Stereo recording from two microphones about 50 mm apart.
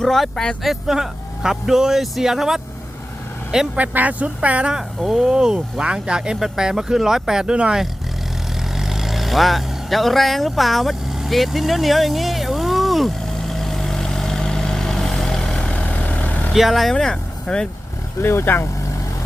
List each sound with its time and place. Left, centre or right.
0.0 s speech: centre
0.6 s speech: centre
3.8 s speech: right
4.7 s speech: centre
8.8 s vehicle: centre
15.6 s vehicle: left
16.5 s speech: centre
16.9 s speech: centre
18.2 s speech: left